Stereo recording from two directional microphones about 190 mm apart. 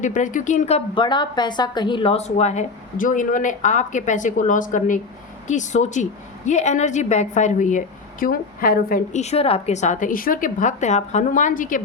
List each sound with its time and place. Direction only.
0.0 s a woman's voice: 40° left (ahead or behind)
9.2 s a woman's voice: 30° left (ahead or behind)